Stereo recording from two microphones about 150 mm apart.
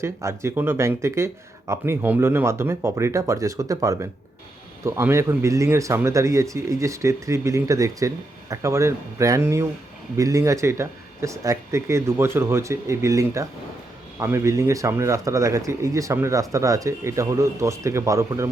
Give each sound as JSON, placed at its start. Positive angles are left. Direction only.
{"t": 0.0, "sound": "speech", "side_deg": -20}